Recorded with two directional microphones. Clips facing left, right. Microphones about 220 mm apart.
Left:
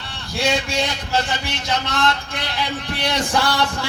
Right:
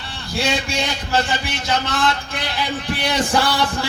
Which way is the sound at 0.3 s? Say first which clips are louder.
Left 1 dB; centre (ahead or behind).